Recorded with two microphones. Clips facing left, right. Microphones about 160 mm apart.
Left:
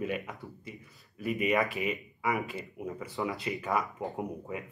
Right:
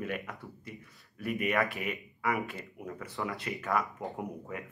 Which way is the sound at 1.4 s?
15° left (ahead or behind).